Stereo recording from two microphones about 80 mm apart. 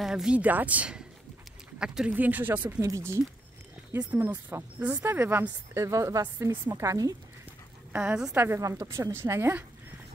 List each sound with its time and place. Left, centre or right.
0.0 s speech: centre
0.4 s a woman's voice: centre
2.1 s speech: right
2.8 s a woman's voice: right
4.1 s speech: right
5.8 s a woman's voice: right
7.9 s a woman's voice: centre
8.5 s a woman's voice: right